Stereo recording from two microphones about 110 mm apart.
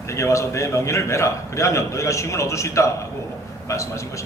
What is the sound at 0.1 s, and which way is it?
A man's voice, 25° left (ahead or behind).